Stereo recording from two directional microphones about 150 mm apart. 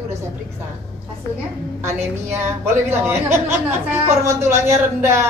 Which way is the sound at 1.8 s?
15° right (ahead or behind).